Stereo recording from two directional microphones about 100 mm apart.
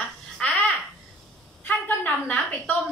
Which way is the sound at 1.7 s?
15° left (ahead or behind).